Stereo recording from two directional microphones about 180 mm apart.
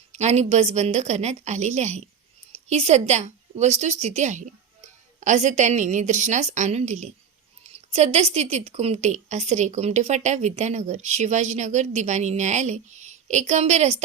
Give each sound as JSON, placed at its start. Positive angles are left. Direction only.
{"t": 0.1, "sound": "a woman's voice", "side_deg": -40}